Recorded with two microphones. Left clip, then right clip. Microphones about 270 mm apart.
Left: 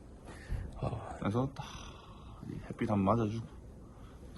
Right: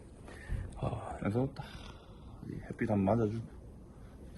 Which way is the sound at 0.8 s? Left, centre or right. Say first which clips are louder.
Right 1 dB; centre.